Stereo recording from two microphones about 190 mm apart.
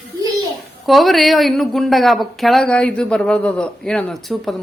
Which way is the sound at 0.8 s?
Centre (ahead or behind).